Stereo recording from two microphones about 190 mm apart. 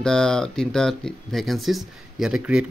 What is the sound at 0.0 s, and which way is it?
A man's voice, 5° left (ahead or behind).